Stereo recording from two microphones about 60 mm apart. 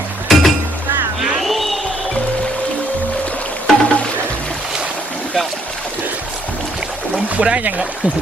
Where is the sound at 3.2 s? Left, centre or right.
Left.